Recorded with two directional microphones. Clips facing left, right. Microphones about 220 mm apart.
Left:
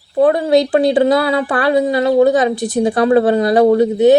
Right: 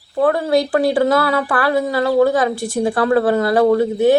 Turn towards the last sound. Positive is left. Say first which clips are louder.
# left 3 dB
turn(degrees=20)  # may be behind; listen again after turning